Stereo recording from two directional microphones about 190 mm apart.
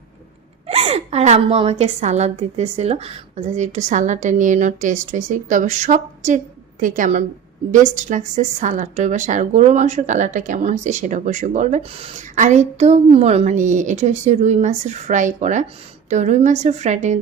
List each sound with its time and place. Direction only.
0.7 s a woman's voice: 30° right (ahead or behind)